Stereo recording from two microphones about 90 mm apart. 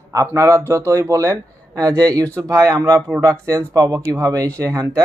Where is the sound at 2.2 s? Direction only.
15° left (ahead or behind).